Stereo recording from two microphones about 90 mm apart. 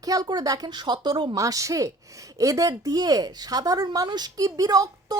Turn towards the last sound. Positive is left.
turn(degrees=-45)  # may be behind; listen again after turning